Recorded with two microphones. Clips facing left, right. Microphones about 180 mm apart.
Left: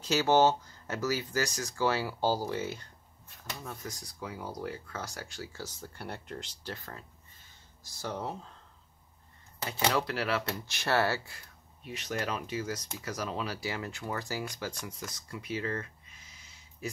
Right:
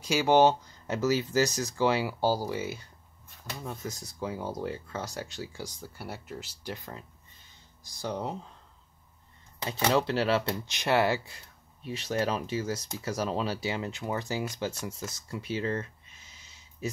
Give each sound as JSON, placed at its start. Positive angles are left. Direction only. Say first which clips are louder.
{"t": 0.0, "sound": "speech", "louder": "right 3 dB", "side_deg": -10}
{"t": 3.6, "sound": "speech", "louder": "right 7 dB", "side_deg": -20}
{"t": 9.7, "sound": "speech", "louder": "right 4 dB", "side_deg": -25}
{"t": 11.8, "sound": "speech", "louder": "right 5 dB", "side_deg": -30}